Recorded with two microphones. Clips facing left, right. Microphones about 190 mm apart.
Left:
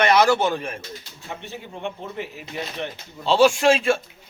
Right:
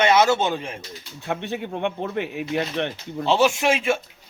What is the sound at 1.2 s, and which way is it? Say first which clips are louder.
Speech: right 8 dB; 65° right (ahead or behind).